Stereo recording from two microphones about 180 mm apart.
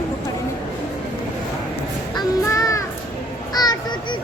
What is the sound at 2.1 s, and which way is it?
Child singing, 20° left (ahead or behind).